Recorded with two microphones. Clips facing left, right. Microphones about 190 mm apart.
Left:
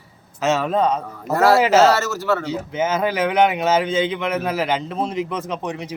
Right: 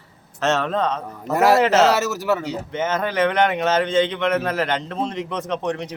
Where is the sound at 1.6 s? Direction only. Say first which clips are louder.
Left 2 dB; 5° left (ahead or behind).